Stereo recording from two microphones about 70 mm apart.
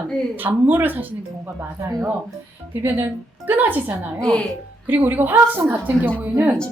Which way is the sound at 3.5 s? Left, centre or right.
Right.